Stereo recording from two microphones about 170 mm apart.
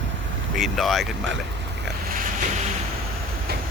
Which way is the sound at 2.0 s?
55° right (ahead or behind).